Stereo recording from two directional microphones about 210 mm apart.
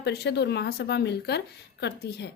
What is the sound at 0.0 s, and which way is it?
Speech, 50° left (ahead or behind).